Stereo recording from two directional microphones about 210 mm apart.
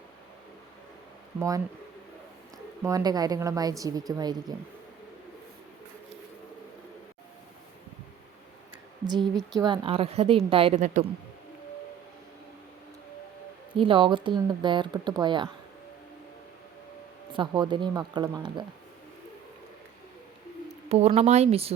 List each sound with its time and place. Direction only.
1.4 s a woman's voice: 15° right (ahead or behind)
2.8 s a woman's voice: 15° right (ahead or behind)
9.0 s speech: 20° right (ahead or behind)
13.7 s speech: 25° right (ahead or behind)
17.3 s speech: 20° right (ahead or behind)
20.9 s speech: 30° right (ahead or behind)